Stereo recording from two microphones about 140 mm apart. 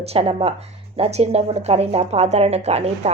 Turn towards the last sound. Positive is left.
turn(degrees=-50)  # may be behind; listen again after turning